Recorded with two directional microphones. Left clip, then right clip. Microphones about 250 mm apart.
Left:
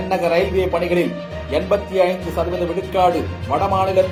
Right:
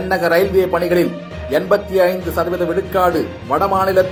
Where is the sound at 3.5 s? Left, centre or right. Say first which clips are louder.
Right 2 dB; right.